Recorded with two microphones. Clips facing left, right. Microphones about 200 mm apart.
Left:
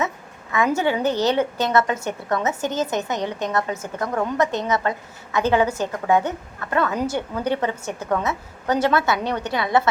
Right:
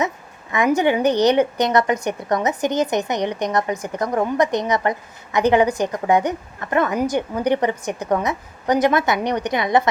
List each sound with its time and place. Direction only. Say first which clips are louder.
0.8 s a woman's voice: right 4 dB; 15° right (ahead or behind)